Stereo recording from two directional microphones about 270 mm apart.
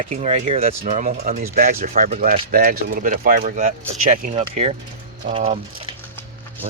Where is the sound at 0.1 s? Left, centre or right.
Right.